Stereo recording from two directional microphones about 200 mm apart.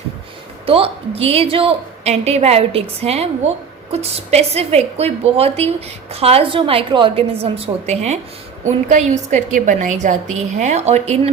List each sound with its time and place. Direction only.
0.6 s a woman's voice: 30° right (ahead or behind)